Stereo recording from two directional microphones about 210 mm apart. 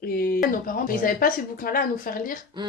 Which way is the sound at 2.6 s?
20° right (ahead or behind).